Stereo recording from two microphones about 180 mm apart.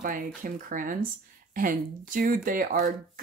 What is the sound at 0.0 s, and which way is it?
Speech, 50° right (ahead or behind).